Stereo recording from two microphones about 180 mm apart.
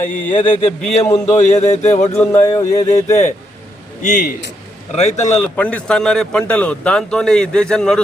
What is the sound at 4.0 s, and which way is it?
Speech, 45° left (ahead or behind).